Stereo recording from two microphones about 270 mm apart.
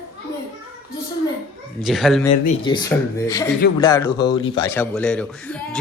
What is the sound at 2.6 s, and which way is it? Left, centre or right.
Speech, centre.